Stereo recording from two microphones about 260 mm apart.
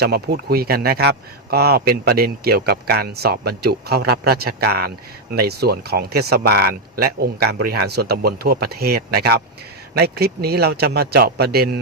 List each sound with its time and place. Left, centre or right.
0.0 s a man's voice: right